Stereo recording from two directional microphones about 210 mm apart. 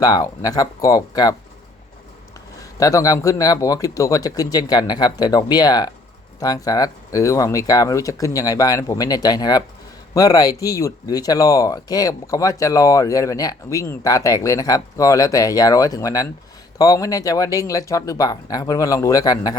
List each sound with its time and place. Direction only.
0.0 s speech: 15° left (ahead or behind)
2.6 s speech: 15° left (ahead or behind)